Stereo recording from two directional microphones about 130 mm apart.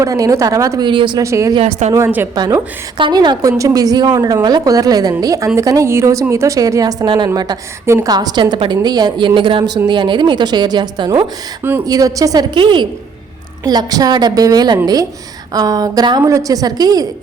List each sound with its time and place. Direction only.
0.0 s a woman's voice: 25° right (ahead or behind)
0.9 s a woman's voice: 35° right (ahead or behind)
1.2 s a woman's voice: 25° right (ahead or behind)
1.8 s a woman's voice: 65° right (ahead or behind)
3.0 s a woman's voice: 35° right (ahead or behind)